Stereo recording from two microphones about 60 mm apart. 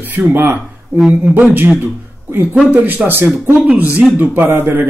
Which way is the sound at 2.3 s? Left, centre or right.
Right.